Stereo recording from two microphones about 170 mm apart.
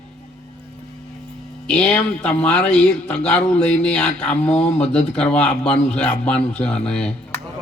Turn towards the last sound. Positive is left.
turn(degrees=5)  # may be behind; listen again after turning